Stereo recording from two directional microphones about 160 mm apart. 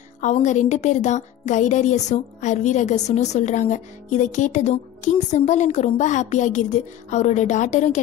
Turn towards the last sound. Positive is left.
turn(degrees=50)  # may be behind; listen again after turning